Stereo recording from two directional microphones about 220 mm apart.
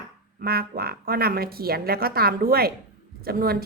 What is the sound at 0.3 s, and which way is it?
A woman's voice, 45° right (ahead or behind).